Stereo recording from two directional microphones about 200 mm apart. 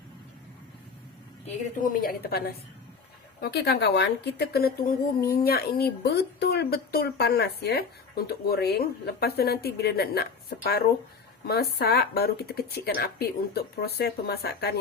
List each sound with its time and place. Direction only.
1.5 s a woman's voice: 40° left (ahead or behind)